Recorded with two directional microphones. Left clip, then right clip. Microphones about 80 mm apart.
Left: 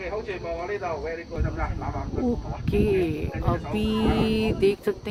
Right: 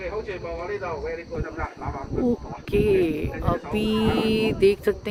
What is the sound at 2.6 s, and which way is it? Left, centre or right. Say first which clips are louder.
Speech: right 3 dB; right.